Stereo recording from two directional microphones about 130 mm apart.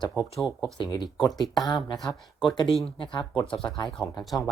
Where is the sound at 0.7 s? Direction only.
35° left (ahead or behind).